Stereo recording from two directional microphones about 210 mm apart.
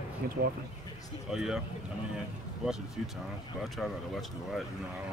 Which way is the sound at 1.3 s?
5° right (ahead or behind).